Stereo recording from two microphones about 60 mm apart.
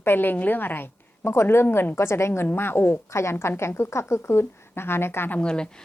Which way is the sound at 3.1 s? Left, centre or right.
Left.